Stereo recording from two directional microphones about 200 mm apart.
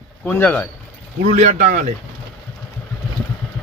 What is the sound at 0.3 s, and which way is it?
Speech, 10° left (ahead or behind).